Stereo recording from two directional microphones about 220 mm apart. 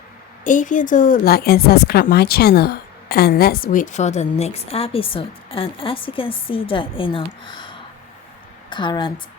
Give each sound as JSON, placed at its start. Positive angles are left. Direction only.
{"t": 0.4, "sound": "a woman's voice", "side_deg": 35}